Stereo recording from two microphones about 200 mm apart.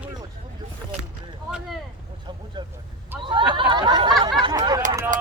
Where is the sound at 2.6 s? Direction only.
20° right (ahead or behind).